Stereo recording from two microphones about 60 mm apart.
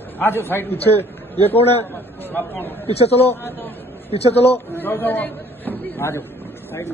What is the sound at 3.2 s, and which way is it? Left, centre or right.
A man's voice, left.